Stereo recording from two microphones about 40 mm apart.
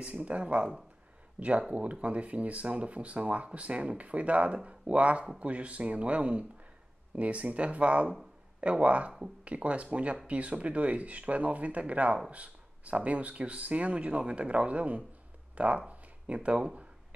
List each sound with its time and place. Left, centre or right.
0.0 s speech: right